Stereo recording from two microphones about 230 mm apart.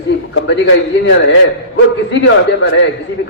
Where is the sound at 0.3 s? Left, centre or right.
Left.